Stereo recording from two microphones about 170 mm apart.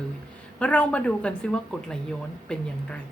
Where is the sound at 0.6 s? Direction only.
10° left (ahead or behind).